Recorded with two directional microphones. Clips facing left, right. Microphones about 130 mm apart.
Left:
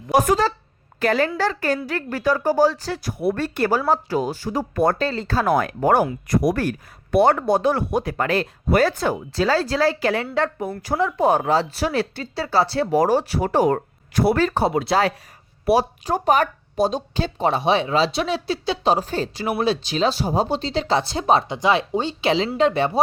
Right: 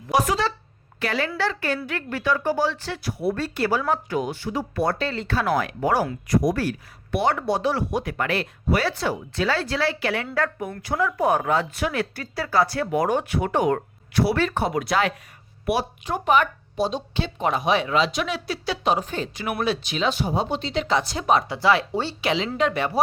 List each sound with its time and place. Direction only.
0.1 s a woman's voice: 45° left (ahead or behind)
3.2 s speech: 55° left (ahead or behind)
8.0 s speech: 35° left (ahead or behind)
10.3 s speech: 25° left (ahead or behind)